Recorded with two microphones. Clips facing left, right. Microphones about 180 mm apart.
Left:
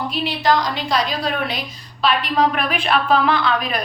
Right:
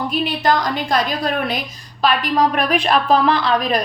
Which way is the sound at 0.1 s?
50° right (ahead or behind).